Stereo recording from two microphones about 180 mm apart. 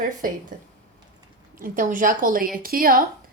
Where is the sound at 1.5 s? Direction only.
50° right (ahead or behind).